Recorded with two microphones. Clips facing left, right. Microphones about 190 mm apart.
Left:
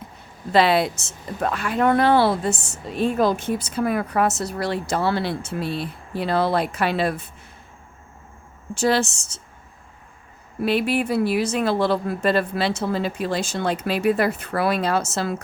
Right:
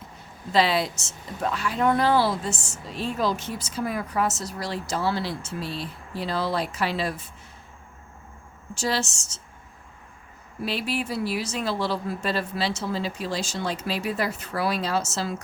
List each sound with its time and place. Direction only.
0.5 s speech: 60° left (ahead or behind)
8.7 s speech: 55° left (ahead or behind)
10.6 s speech: 55° left (ahead or behind)